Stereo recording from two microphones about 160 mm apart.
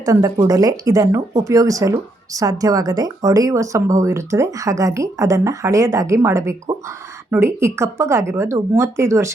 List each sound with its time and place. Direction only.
0.0 s a woman's voice: 20° right (ahead or behind)